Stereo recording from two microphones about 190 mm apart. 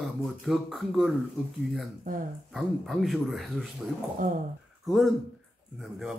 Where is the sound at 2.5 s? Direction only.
Centre (ahead or behind).